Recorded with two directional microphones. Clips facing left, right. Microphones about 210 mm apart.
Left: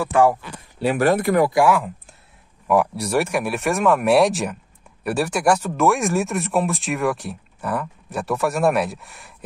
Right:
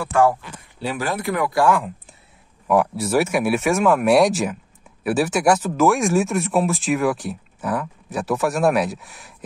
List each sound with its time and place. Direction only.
0.1 s speech: 15° left (ahead or behind)
0.7 s speech: 60° left (ahead or behind)
2.7 s speech: centre (ahead or behind)